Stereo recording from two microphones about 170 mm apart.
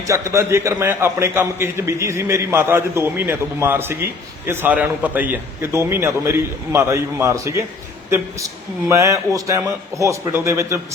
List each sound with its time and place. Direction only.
0.1 s a man's voice: 15° right (ahead or behind)
8.9 s a man's voice: 20° right (ahead or behind)